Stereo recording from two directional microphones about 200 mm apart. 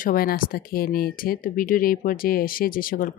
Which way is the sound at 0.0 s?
45° left (ahead or behind).